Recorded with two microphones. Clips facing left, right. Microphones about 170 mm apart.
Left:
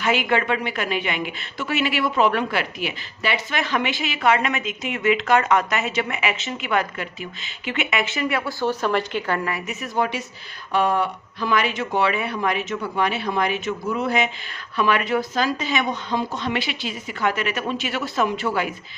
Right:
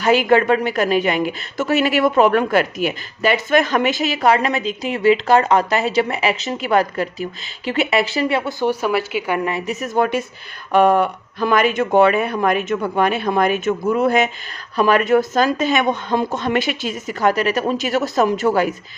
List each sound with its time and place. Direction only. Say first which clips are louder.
0.0 s a woman's voice: right 7 dB; 40° right (ahead or behind)
8.6 s a woman's voice: right 1 dB; 10° right (ahead or behind)
9.5 s a woman's voice: right 5 dB; 25° right (ahead or behind)
9.8 s speech: right 5 dB; 50° right (ahead or behind)